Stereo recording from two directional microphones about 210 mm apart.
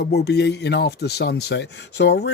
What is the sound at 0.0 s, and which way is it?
Speech, 50° left (ahead or behind).